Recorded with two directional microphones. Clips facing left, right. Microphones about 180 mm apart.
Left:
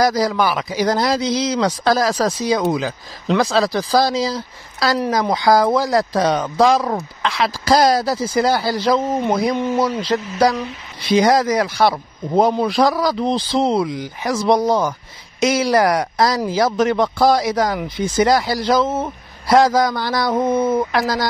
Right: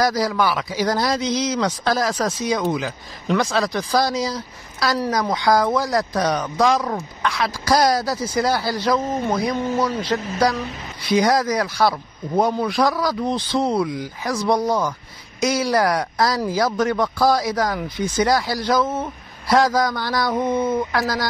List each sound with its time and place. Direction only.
0.0 s speech: 20° left (ahead or behind)
6.8 s speech: 55° left (ahead or behind)
7.2 s speech: 25° left (ahead or behind)
11.1 s speech: 25° left (ahead or behind)